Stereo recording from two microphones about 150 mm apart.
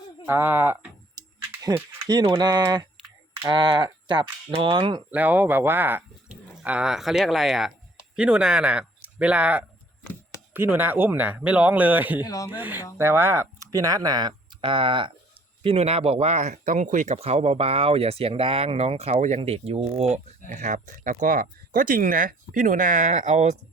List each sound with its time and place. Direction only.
0.3 s speech: 15° right (ahead or behind)
1.2 s a sound: 25° right (ahead or behind)
2.0 s speech: 30° right (ahead or behind)
3.3 s a sound: 30° right (ahead or behind)
5.1 s speech: 10° right (ahead or behind)
12.2 s speech: 25° left (ahead or behind)
12.5 s speech: 15° right (ahead or behind); by 20.2 s 45° right (ahead or behind)
20.6 s speech: 55° right (ahead or behind)